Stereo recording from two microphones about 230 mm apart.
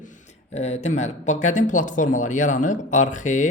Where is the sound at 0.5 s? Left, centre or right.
Left.